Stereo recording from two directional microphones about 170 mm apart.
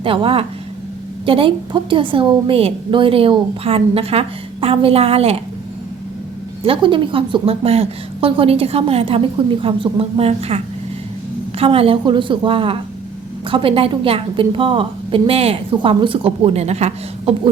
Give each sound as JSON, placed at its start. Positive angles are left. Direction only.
{"t": 0.0, "sound": "a woman's voice", "side_deg": -30}
{"t": 6.7, "sound": "a woman's voice", "side_deg": -30}
{"t": 11.6, "sound": "a woman's voice", "side_deg": -35}